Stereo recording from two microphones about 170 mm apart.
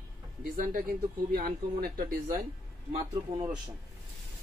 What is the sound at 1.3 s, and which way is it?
Speech, 60° right (ahead or behind).